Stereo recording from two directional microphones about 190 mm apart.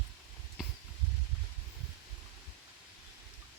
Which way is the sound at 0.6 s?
Centre (ahead or behind).